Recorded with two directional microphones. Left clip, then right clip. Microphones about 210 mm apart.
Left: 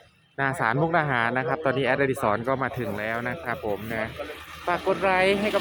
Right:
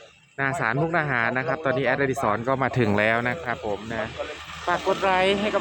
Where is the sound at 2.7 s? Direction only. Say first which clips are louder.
Right 7 dB; 50° right (ahead or behind).